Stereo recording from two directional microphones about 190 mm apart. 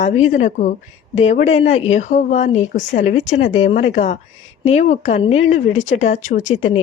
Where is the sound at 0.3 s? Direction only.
40° left (ahead or behind).